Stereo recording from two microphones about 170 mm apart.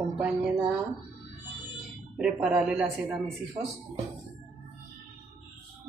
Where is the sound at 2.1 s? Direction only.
5° right (ahead or behind).